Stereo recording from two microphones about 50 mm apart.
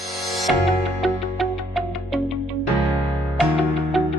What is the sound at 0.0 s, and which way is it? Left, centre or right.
Music, centre.